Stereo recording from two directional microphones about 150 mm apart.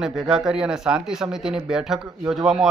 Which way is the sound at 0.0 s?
5° right (ahead or behind).